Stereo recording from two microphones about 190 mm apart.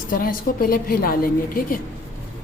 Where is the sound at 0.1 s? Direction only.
50° left (ahead or behind).